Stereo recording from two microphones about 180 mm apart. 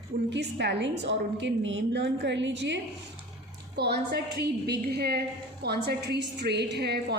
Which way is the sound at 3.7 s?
65° right (ahead or behind).